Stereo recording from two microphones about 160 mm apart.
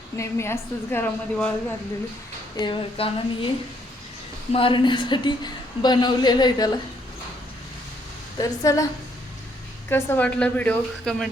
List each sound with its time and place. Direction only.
0.2 s a woman's voice: 15° left (ahead or behind)
2.6 s speech: 30° left (ahead or behind)
4.5 s a woman's voice: 30° left (ahead or behind)
8.4 s a woman's voice: 20° left (ahead or behind)
9.9 s a woman's voice: 10° left (ahead or behind)